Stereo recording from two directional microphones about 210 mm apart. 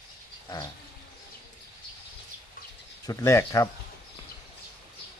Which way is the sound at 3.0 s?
15° left (ahead or behind).